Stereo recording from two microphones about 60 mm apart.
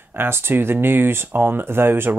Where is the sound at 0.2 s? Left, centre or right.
Right.